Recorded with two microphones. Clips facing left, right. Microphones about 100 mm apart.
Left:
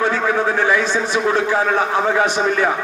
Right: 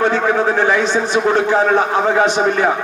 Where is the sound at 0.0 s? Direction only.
55° right (ahead or behind).